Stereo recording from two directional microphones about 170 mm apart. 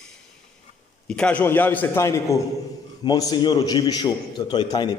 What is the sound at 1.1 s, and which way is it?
A man's voice, 5° left (ahead or behind).